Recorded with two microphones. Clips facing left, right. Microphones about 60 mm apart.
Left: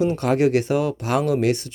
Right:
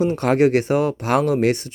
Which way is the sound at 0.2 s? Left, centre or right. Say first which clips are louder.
Right 2 dB; right.